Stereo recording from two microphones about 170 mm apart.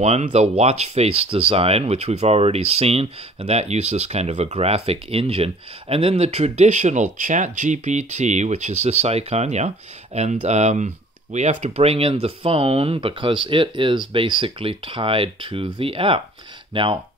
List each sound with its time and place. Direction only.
0.0 s speech: 40° right (ahead or behind)